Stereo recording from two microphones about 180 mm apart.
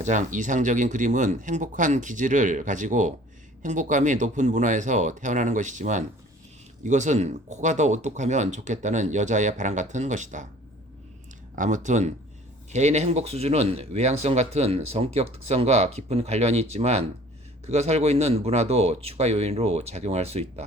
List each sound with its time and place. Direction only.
0.0 s speech: 45° right (ahead or behind)
11.5 s speech: 45° right (ahead or behind)